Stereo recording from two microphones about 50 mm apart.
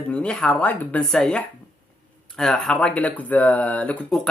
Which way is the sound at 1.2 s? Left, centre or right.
Left.